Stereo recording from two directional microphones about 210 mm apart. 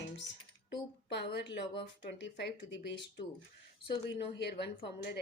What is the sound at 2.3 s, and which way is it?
Speech, 55° left (ahead or behind).